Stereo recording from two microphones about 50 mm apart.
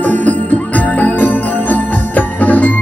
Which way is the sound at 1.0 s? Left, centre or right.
Left.